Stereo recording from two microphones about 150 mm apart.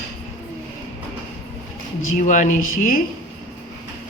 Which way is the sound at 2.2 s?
55° left (ahead or behind).